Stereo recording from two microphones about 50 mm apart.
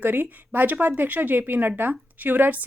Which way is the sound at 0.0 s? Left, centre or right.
Right.